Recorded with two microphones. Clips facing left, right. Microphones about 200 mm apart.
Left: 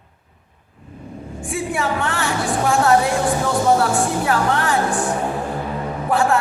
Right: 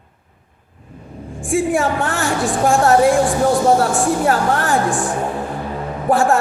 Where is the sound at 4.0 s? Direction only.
45° right (ahead or behind).